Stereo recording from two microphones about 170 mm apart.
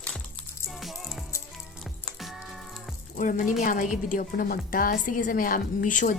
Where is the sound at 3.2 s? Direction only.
50° left (ahead or behind).